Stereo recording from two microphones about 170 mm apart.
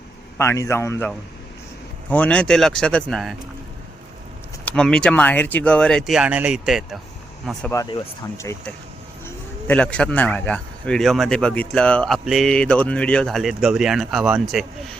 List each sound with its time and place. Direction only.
0.3 s a man's voice: 15° left (ahead or behind)
4.6 s speech: 5° left (ahead or behind)
9.2 s speech: 10° left (ahead or behind)